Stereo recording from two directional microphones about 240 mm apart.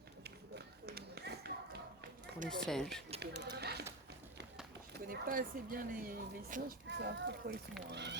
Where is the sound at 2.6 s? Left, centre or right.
Centre.